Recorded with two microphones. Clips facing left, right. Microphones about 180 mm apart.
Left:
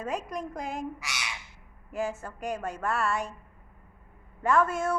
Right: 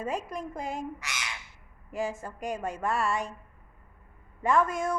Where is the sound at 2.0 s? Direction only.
10° right (ahead or behind).